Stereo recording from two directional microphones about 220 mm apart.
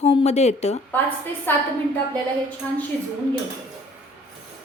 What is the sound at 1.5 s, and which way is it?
Speech, 10° left (ahead or behind).